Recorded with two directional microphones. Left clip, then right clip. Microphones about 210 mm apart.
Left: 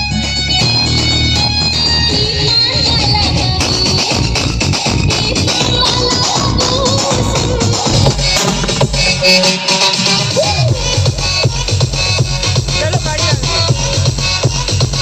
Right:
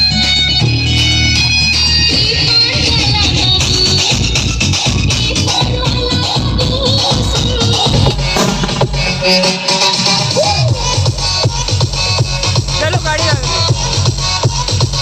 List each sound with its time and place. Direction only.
1.3 s music: 30° left (ahead or behind)
8.8 s music: 50° left (ahead or behind)